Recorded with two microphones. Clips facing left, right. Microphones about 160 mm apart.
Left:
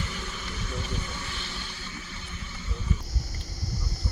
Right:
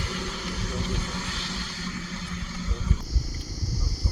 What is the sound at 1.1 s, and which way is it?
Vehicle, 90° right.